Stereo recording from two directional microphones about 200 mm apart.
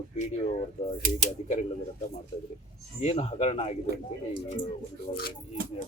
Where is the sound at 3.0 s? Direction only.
30° left (ahead or behind).